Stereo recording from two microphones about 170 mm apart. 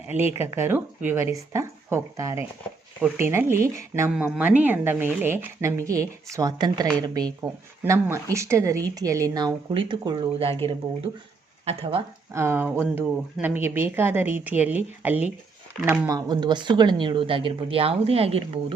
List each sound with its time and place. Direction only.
0.3 s speech: 15° right (ahead or behind)
4.1 s speech: 5° right (ahead or behind); by 10.5 s 25° right (ahead or behind)
11.6 s speech: 35° right (ahead or behind)
12.3 s speech: 15° right (ahead or behind); by 18.6 s 35° right (ahead or behind)